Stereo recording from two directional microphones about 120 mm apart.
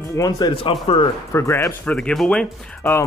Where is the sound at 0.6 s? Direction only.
50° left (ahead or behind).